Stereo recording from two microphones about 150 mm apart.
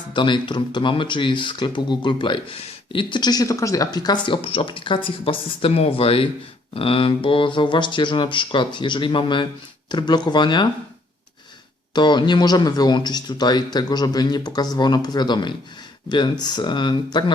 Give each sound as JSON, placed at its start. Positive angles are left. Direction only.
{"t": 0.1, "sound": "speech", "side_deg": 30}
{"t": 11.9, "sound": "speech", "side_deg": 30}